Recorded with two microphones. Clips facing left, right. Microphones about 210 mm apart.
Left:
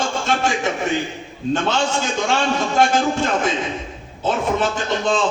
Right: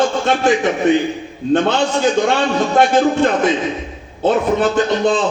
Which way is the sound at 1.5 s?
60° right (ahead or behind).